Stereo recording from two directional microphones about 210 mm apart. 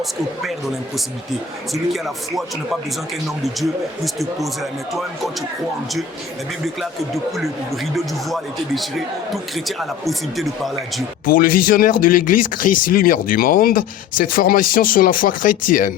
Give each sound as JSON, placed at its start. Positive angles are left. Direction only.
{"t": 1.7, "sound": "speech", "side_deg": 0}
{"t": 3.4, "sound": "speech", "side_deg": 0}
{"t": 7.1, "sound": "speech", "side_deg": 0}
{"t": 11.3, "sound": "speech", "side_deg": 40}